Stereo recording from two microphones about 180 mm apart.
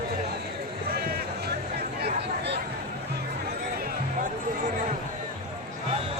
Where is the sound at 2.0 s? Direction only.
65° right (ahead or behind).